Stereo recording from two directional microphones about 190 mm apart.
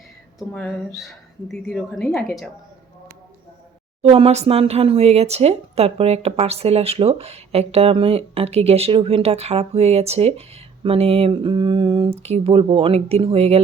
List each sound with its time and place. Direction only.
0.3 s a woman's voice: 5° left (ahead or behind)
4.0 s speech: 30° right (ahead or behind)